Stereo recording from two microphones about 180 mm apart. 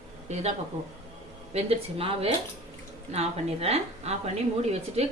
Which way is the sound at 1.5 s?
35° right (ahead or behind).